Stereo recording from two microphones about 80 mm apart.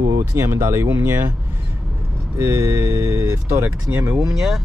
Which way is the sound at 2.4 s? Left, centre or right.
Right.